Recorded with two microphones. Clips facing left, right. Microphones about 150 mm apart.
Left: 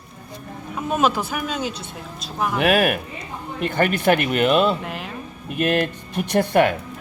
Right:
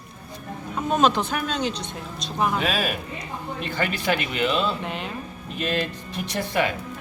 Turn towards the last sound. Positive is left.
turn(degrees=55)  # may be behind; listen again after turning